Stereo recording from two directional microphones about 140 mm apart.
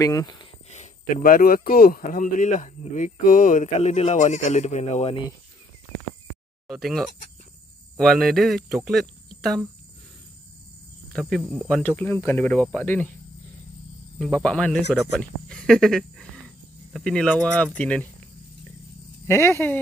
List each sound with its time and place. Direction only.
0.0 s speech: 25° left (ahead or behind)
0.7 s a sound: 55° left (ahead or behind)
1.2 s speech: 90° left; by 5.2 s 45° left (ahead or behind)
6.7 s speech: centre (ahead or behind)
11.1 s speech: 5° left (ahead or behind)
14.1 s speech: 5° left (ahead or behind)
19.2 s speech: 20° left (ahead or behind)